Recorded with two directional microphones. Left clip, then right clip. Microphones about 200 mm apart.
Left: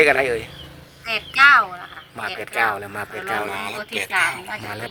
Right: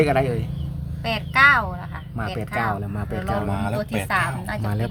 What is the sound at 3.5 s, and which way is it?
Speech, 45° right (ahead or behind).